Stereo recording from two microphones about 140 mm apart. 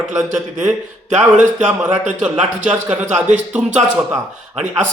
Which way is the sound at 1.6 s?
10° right (ahead or behind).